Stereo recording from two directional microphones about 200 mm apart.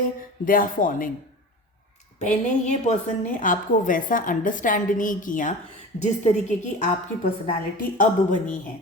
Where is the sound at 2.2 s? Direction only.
35° left (ahead or behind).